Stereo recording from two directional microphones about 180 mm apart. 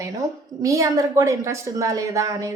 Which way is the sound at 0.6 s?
15° right (ahead or behind).